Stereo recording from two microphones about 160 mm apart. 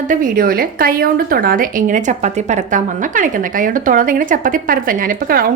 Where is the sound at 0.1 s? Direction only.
60° right (ahead or behind).